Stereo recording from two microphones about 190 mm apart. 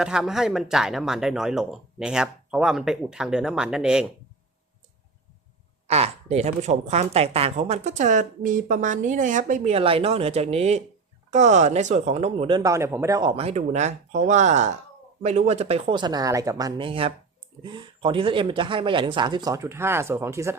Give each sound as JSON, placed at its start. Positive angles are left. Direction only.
{"t": 0.0, "sound": "speech", "side_deg": -5}
{"t": 5.9, "sound": "speech", "side_deg": -35}